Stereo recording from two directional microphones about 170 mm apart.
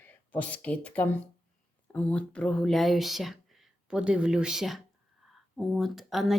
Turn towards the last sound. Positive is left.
turn(degrees=0)  # may be behind; listen again after turning